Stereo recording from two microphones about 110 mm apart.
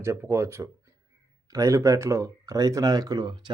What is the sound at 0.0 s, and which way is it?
Speech, 25° right (ahead or behind).